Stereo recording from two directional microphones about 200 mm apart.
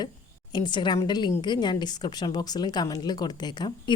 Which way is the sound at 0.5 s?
20° left (ahead or behind).